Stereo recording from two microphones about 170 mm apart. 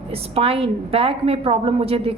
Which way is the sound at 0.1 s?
35° right (ahead or behind).